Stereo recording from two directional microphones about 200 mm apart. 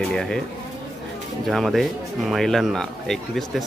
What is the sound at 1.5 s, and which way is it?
Speech, centre (ahead or behind).